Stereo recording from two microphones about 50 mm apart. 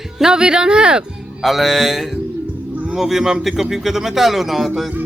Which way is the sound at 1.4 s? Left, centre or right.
Centre.